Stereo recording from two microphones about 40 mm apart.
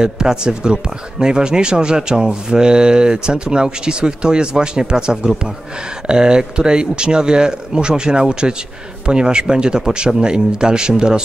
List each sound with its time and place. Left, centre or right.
0.0 s speech: centre